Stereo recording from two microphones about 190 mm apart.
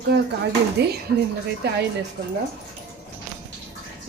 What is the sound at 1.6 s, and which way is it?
Speech, 60° right (ahead or behind).